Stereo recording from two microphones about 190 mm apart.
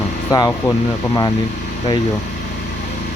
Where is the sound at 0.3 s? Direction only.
20° left (ahead or behind).